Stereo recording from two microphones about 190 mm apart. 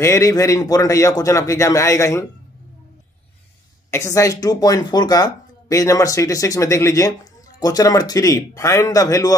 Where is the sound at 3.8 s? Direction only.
15° left (ahead or behind).